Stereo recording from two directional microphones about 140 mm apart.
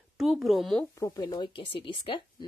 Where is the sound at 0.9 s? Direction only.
25° left (ahead or behind).